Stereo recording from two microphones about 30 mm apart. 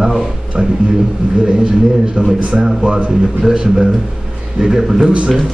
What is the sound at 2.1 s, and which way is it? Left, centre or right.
A man's voice, right.